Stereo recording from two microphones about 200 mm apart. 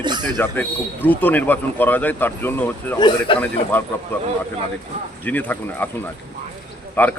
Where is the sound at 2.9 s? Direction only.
20° left (ahead or behind).